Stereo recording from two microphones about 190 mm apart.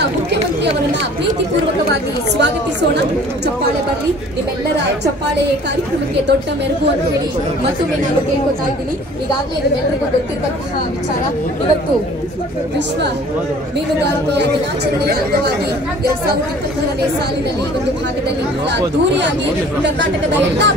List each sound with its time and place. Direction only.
18.7 s speech: 70° right (ahead or behind)